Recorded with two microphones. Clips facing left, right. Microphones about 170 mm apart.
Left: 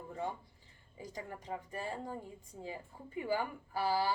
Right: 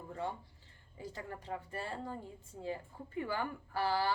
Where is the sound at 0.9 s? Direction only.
15° left (ahead or behind).